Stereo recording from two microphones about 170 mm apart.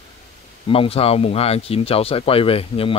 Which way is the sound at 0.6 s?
35° left (ahead or behind).